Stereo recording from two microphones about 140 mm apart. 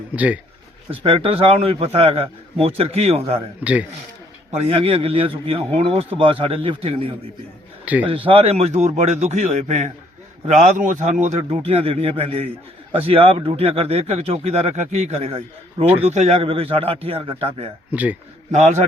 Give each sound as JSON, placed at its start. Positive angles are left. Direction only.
{"t": 0.9, "sound": "speech", "side_deg": -40}
{"t": 3.6, "sound": "a man's voice", "side_deg": -10}
{"t": 4.7, "sound": "a man's voice", "side_deg": -40}
{"t": 17.9, "sound": "a man's voice", "side_deg": -10}
{"t": 18.5, "sound": "a man's voice", "side_deg": -60}